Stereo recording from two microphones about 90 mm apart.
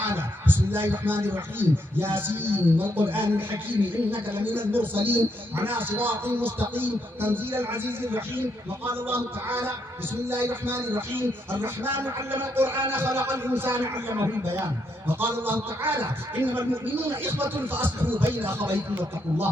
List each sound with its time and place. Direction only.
0.0 s a man's voice: 25° right (ahead or behind)